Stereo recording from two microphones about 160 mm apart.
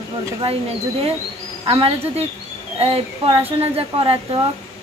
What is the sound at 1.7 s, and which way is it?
Speech, 35° right (ahead or behind).